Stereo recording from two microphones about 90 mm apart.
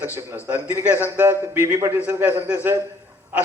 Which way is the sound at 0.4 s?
20° right (ahead or behind).